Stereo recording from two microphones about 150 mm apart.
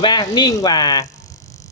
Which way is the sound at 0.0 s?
30° left (ahead or behind).